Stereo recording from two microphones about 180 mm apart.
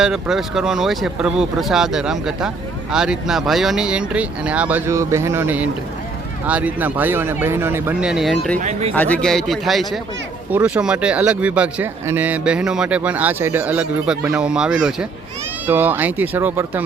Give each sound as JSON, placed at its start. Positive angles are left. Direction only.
{"t": 0.0, "sound": "speech", "side_deg": -5}
{"t": 8.5, "sound": "speech", "side_deg": -45}
{"t": 8.9, "sound": "speech", "side_deg": 10}